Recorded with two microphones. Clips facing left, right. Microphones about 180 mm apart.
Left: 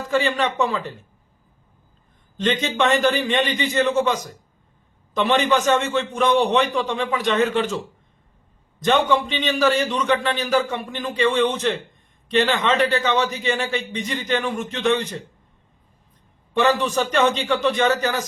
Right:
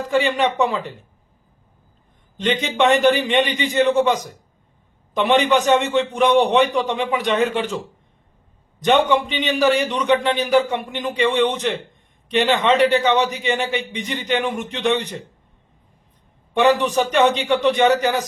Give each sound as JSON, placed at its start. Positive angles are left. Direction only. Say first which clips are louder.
{"t": 0.0, "sound": "a man's voice", "louder": "right 2 dB", "side_deg": -15}
{"t": 2.4, "sound": "a man's voice", "louder": "right 2 dB", "side_deg": -15}
{"t": 8.8, "sound": "a man's voice", "louder": "right 2 dB", "side_deg": -15}
{"t": 16.6, "sound": "a man's voice", "louder": "right 3 dB", "side_deg": -15}